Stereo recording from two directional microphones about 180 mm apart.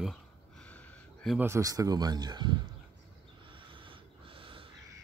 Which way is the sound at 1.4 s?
15° right (ahead or behind).